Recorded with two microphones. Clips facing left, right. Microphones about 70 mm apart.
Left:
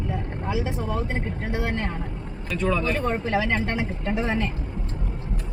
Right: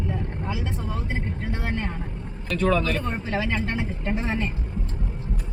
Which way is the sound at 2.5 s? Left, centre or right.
Centre.